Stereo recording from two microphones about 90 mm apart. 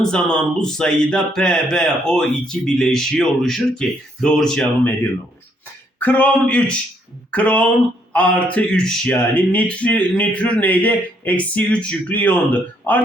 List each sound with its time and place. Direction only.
0.0 s speech: 5° left (ahead or behind)
6.0 s speech: 15° left (ahead or behind)